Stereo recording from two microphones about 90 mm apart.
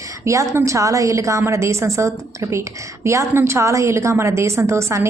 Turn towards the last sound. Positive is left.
turn(degrees=-35)  # may be behind; listen again after turning